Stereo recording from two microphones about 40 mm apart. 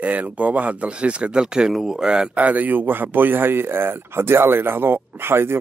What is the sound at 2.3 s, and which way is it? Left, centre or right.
Speech, right.